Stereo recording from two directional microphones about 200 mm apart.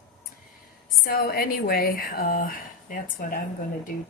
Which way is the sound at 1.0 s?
50° left (ahead or behind).